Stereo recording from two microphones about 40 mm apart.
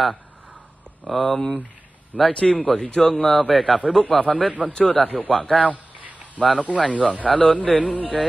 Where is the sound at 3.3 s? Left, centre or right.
Centre.